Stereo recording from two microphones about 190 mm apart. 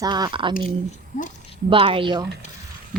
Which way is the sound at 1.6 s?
30° right (ahead or behind).